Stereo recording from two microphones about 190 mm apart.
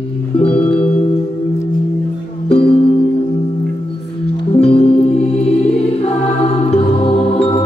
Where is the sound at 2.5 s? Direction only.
30° left (ahead or behind).